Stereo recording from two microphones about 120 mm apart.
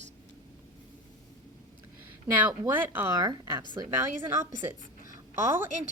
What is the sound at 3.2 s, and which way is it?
Speech, 30° right (ahead or behind).